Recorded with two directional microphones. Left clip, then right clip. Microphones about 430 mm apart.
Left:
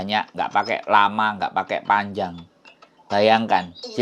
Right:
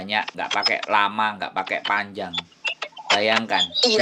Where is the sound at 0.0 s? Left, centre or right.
Centre.